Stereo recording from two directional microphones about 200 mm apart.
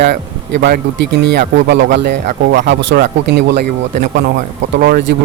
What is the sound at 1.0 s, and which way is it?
Speech, 60° right (ahead or behind).